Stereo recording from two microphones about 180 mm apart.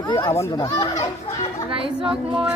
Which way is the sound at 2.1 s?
5° right (ahead or behind).